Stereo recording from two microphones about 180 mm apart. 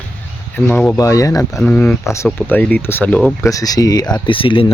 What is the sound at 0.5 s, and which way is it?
Speech, 10° left (ahead or behind).